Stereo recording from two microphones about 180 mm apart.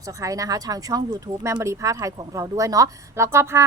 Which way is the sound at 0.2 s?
20° right (ahead or behind).